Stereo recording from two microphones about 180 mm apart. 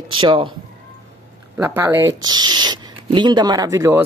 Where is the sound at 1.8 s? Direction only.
15° right (ahead or behind).